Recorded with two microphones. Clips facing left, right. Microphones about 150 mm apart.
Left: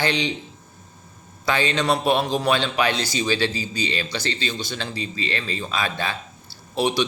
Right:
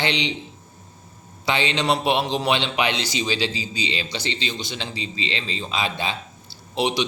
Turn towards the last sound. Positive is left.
turn(degrees=-20)  # may be behind; listen again after turning